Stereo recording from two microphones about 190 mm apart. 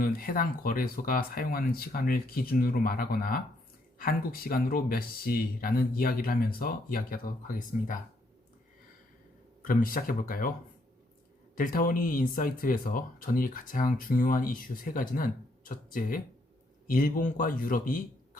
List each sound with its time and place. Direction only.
0.0 s speech: 50° left (ahead or behind)
9.6 s speech: 45° left (ahead or behind)
11.5 s speech: 45° left (ahead or behind)